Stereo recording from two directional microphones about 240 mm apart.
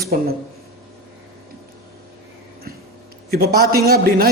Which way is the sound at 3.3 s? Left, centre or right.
Right.